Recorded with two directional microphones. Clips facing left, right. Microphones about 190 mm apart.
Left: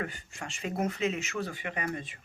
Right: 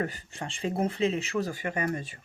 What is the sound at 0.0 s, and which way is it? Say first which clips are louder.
Speech: right 5 dB; 35° right (ahead or behind).